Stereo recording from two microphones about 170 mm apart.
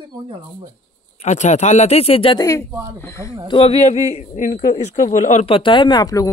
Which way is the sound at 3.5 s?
35° left (ahead or behind).